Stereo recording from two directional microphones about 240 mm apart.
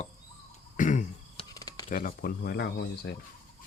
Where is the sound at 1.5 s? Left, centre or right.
Centre.